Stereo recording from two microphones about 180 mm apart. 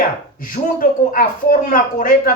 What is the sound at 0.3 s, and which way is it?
Speech, 50° left (ahead or behind).